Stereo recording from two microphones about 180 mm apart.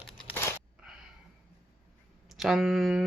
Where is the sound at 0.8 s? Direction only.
5° right (ahead or behind).